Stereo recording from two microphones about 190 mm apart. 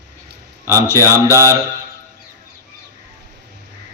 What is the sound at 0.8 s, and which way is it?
Speech, 15° left (ahead or behind).